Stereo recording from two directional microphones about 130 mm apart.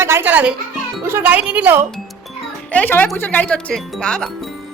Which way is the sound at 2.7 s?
15° left (ahead or behind).